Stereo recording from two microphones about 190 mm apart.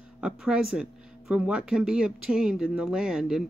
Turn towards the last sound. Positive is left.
turn(degrees=-5)  # may be behind; listen again after turning